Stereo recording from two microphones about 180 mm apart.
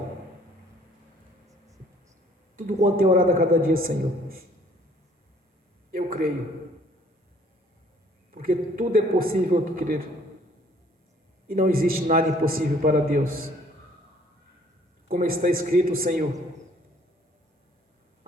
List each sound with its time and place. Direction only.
2.6 s a man's voice: 50° right (ahead or behind)
5.9 s a sound: 50° right (ahead or behind)
8.3 s a man's voice: 50° right (ahead or behind)
11.4 s a man's voice: 55° right (ahead or behind)
15.1 s a man's voice: 50° right (ahead or behind)